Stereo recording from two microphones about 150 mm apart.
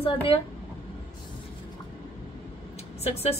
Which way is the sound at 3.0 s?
40° left (ahead or behind).